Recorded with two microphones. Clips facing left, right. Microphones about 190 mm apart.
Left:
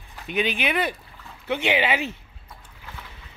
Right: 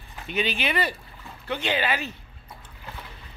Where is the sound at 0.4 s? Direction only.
55° left (ahead or behind).